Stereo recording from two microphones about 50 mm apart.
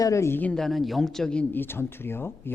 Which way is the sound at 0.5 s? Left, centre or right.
Centre.